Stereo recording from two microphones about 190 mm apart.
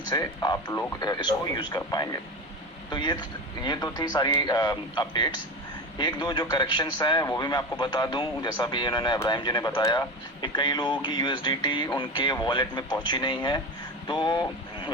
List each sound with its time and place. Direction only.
0.1 s a man's voice: 20° left (ahead or behind)